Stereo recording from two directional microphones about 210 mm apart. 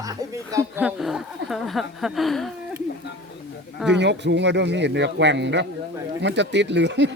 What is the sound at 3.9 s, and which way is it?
A man's voice, 55° right (ahead or behind).